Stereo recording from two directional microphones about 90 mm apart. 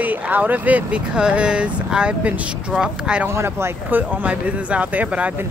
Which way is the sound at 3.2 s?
30° right (ahead or behind).